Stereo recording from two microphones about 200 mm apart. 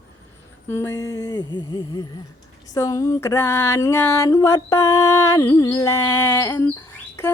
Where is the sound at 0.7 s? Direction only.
10° left (ahead or behind).